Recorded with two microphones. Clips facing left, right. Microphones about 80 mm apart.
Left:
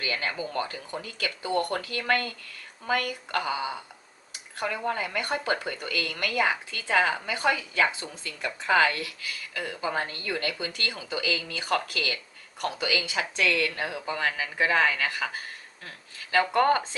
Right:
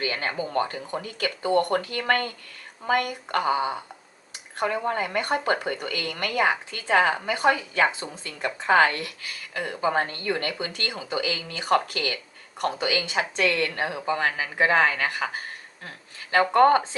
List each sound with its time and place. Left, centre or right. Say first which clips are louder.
0.0 s a woman's voice: right 3 dB; right
16.5 s a woman's voice: right 6 dB; right